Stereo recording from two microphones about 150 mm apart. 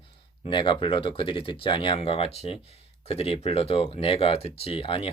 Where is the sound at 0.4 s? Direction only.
35° left (ahead or behind).